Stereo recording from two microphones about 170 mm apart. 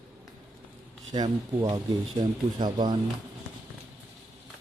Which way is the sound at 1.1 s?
25° right (ahead or behind).